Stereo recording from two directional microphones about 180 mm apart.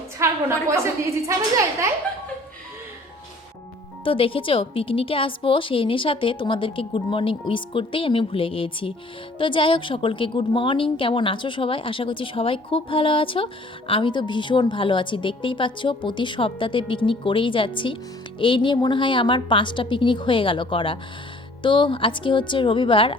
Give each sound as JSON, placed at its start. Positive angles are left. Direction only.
{"t": 0.2, "sound": "a woman's voice", "side_deg": -15}
{"t": 4.0, "sound": "a woman's voice", "side_deg": 30}